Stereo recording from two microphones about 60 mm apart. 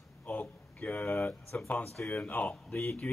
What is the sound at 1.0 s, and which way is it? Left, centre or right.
Speech, left.